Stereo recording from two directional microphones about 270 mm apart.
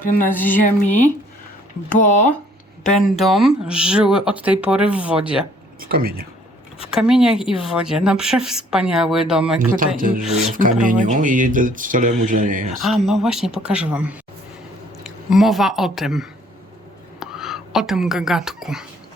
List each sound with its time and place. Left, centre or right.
0.0 s music: left
0.5 s speech: left
2.8 s speech: centre
5.8 s speech: right
6.9 s speech: centre
10.0 s speech: right
12.8 s a woman's voice: centre